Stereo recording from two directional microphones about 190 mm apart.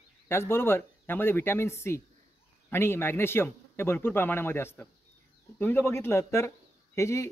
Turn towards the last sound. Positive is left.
turn(degrees=15)  # may be behind; listen again after turning